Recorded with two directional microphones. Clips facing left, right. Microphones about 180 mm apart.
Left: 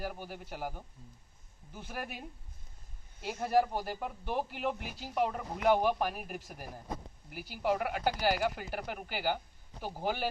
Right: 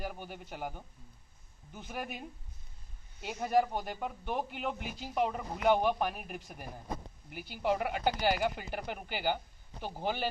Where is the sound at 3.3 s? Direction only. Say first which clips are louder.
Even; centre (ahead or behind).